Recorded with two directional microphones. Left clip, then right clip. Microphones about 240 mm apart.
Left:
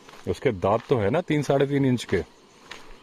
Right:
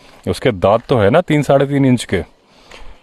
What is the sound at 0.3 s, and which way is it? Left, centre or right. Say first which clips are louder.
Speech: right 10 dB; right.